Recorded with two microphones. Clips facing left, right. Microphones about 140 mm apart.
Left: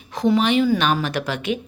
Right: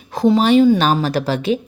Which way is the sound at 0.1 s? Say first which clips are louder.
Right 5 dB; 35° right (ahead or behind).